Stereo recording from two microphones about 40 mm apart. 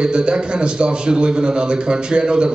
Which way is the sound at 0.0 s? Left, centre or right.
Right.